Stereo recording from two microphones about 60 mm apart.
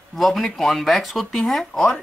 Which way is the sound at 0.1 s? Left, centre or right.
Centre.